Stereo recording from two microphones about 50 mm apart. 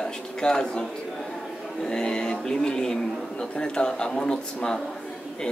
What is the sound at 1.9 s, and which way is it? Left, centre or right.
A man's voice, centre.